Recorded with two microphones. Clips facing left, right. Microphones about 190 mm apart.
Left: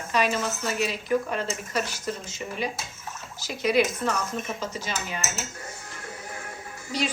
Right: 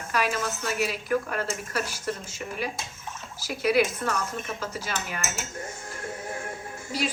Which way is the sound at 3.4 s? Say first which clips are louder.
Even; 10° right (ahead or behind).